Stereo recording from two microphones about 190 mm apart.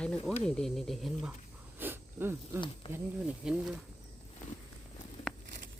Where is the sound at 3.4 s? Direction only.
5° right (ahead or behind).